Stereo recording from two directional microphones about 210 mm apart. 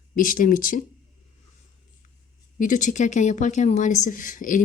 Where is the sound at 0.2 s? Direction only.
40° left (ahead or behind).